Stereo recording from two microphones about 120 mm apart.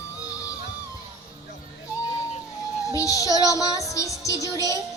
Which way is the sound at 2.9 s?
30° left (ahead or behind).